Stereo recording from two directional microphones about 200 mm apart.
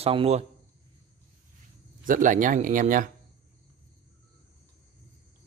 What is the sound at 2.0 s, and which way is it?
Speech, 40° right (ahead or behind).